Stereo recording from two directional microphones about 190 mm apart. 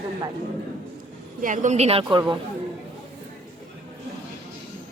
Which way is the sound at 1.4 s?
40° right (ahead or behind).